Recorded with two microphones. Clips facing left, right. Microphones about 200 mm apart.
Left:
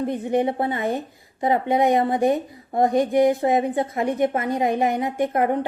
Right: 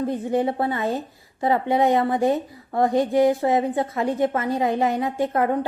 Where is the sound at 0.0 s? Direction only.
20° left (ahead or behind).